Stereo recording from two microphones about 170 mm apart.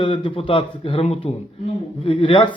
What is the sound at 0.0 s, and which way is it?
A man's voice, 30° left (ahead or behind).